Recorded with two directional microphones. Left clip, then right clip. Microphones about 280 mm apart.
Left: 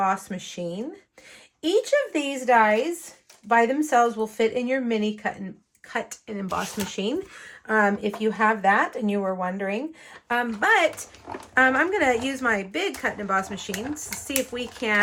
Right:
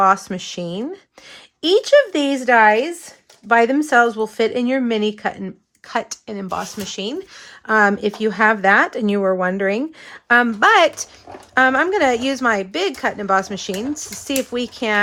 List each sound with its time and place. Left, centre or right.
0.0 s speech: right
5.9 s speech: centre
7.7 s speech: centre